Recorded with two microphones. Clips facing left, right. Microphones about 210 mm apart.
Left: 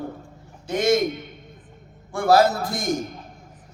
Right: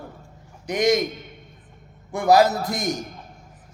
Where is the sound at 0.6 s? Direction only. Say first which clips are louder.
Even; 20° right (ahead or behind).